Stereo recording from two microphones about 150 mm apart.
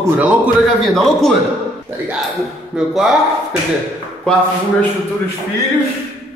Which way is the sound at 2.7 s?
5° right (ahead or behind).